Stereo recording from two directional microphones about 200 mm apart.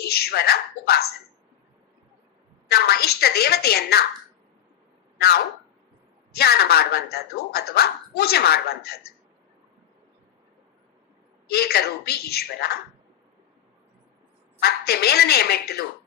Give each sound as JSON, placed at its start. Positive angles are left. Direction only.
{"t": 0.1, "sound": "speech", "side_deg": 55}
{"t": 2.6, "sound": "speech", "side_deg": 55}
{"t": 6.3, "sound": "speech", "side_deg": 50}
{"t": 11.4, "sound": "speech", "side_deg": 50}
{"t": 14.6, "sound": "speech", "side_deg": 50}